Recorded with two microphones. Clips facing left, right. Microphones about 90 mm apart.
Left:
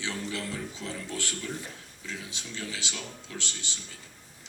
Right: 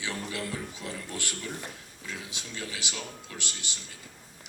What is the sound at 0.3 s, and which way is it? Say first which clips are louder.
A man's voice: even; 15° right (ahead or behind).